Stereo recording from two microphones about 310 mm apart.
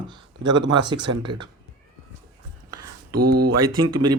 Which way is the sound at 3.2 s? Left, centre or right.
Right.